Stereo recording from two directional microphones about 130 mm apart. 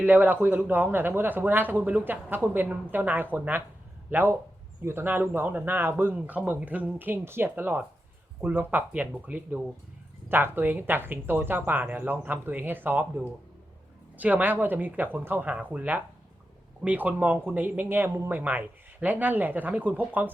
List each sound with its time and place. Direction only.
0.0 s speech: 15° right (ahead or behind)